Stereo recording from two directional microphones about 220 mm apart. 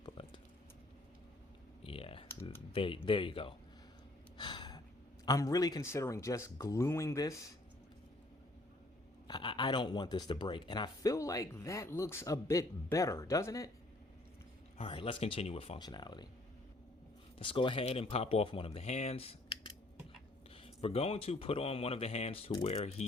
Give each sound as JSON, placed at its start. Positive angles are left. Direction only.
{"t": 0.0, "sound": "a sound", "side_deg": 20}
{"t": 1.8, "sound": "typing", "side_deg": 25}
{"t": 2.7, "sound": "speech", "side_deg": 25}
{"t": 4.4, "sound": "gasp", "side_deg": 20}
{"t": 5.2, "sound": "speech", "side_deg": 15}
{"t": 9.2, "sound": "speech", "side_deg": 20}
{"t": 14.8, "sound": "speech", "side_deg": 25}
{"t": 17.4, "sound": "speech", "side_deg": 25}
{"t": 20.7, "sound": "speech", "side_deg": 25}